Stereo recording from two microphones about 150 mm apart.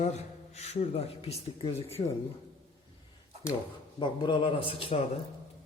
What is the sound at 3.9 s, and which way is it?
A man's voice, 30° left (ahead or behind).